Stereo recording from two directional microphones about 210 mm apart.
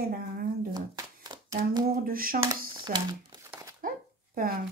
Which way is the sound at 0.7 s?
20° right (ahead or behind).